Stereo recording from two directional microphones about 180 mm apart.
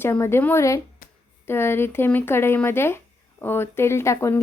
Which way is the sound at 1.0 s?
50° left (ahead or behind).